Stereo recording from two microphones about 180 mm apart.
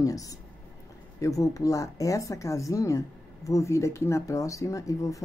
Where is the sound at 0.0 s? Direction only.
20° left (ahead or behind).